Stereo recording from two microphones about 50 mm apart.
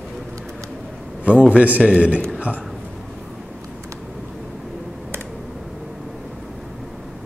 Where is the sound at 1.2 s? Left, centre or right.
Right.